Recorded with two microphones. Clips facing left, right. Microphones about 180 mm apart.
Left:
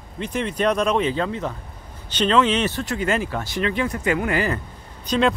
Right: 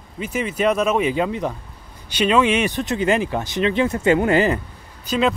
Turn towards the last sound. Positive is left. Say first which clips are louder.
# even
turn(degrees=-5)  # may be behind; listen again after turning